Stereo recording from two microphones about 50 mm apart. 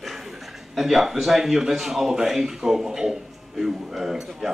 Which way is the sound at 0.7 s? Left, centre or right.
Centre.